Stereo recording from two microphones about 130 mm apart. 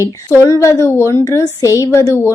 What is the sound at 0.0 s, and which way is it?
A woman's voice, 25° left (ahead or behind).